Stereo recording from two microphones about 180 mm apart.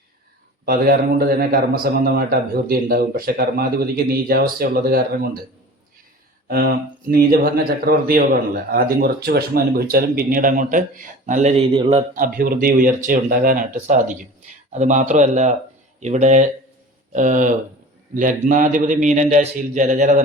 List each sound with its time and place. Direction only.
0.6 s speech: 55° right (ahead or behind)
6.5 s speech: 55° right (ahead or behind)
11.7 s a man's voice: 30° right (ahead or behind)
12.1 s a man's voice: 50° right (ahead or behind)